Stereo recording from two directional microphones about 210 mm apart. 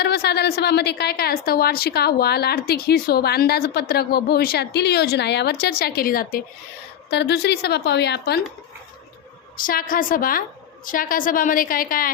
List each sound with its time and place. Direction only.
0.0 s a woman's voice: 50° left (ahead or behind)
9.6 s a woman's voice: 45° left (ahead or behind)